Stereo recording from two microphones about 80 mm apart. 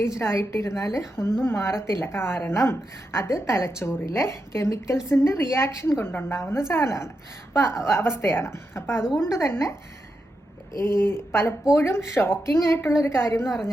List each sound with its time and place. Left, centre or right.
0.0 s a woman's voice: left
10.8 s a woman's voice: left